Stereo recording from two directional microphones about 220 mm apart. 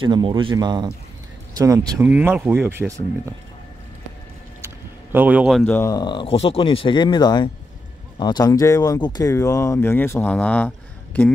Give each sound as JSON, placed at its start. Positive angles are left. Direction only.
{"t": 0.0, "sound": "speech", "side_deg": -20}
{"t": 5.1, "sound": "speech", "side_deg": -5}
{"t": 5.6, "sound": "speech", "side_deg": 10}